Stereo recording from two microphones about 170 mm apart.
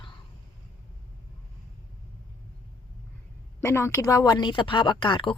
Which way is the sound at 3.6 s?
15° left (ahead or behind).